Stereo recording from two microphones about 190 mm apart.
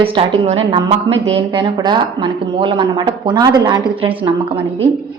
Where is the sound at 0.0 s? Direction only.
30° right (ahead or behind).